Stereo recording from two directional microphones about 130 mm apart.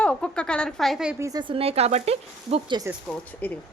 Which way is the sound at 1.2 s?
25° right (ahead or behind).